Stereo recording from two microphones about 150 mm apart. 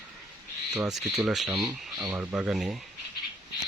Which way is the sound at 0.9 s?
5° right (ahead or behind).